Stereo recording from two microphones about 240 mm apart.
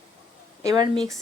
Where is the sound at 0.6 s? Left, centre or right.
Centre.